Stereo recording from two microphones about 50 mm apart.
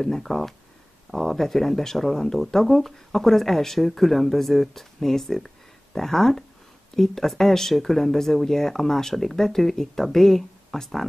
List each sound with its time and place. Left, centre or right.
0.0 s speech: centre